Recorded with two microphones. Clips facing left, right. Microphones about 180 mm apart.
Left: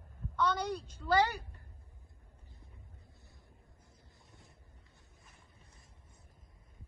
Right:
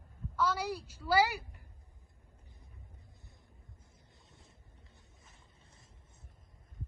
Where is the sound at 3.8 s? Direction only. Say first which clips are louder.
Left 1 dB; 20° right (ahead or behind).